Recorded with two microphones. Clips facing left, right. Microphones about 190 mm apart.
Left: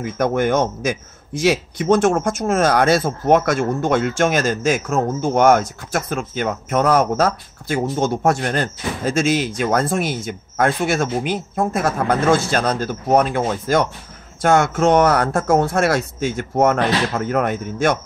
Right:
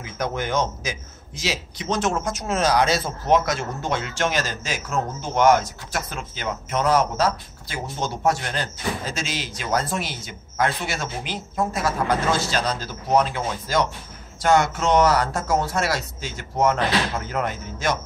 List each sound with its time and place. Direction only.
0.0 s a man's voice: 55° left (ahead or behind)